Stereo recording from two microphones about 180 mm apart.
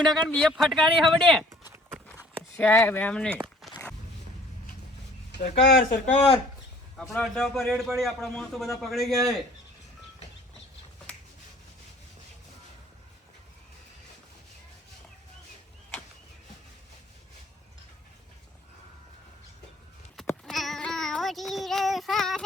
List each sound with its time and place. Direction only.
0.3 s a man's voice: 5° left (ahead or behind)
2.6 s speech: 10° left (ahead or behind)
3.6 s walk: 5° left (ahead or behind)
5.4 s speech: 75° left (ahead or behind)
6.1 s speech: 35° left (ahead or behind)
6.9 s a man's voice: centre (ahead or behind)
20.4 s child singing: centre (ahead or behind)